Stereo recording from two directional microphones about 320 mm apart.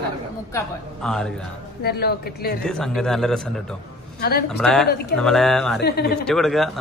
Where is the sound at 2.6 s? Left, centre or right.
Centre.